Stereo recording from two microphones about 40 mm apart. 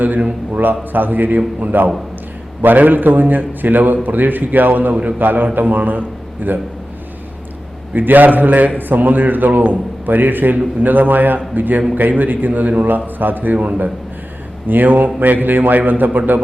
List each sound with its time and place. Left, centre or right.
0.0 s a man's voice: right
7.9 s a man's voice: right
14.7 s a man's voice: right